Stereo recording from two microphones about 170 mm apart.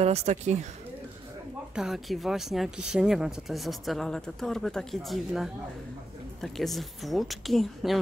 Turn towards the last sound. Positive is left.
turn(degrees=0)  # may be behind; listen again after turning